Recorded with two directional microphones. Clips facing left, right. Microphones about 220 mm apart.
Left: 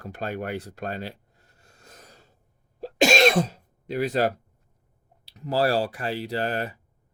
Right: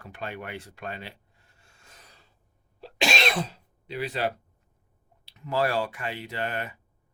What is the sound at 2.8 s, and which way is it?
Throat clearing, 45° left (ahead or behind).